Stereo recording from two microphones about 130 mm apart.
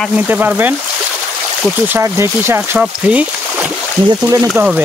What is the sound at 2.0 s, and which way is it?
Speech, 20° right (ahead or behind).